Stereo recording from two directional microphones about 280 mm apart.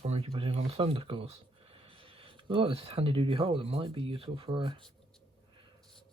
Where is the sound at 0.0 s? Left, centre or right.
Right.